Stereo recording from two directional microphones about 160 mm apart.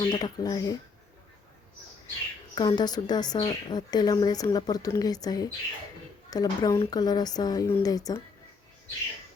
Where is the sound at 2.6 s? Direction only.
25° left (ahead or behind).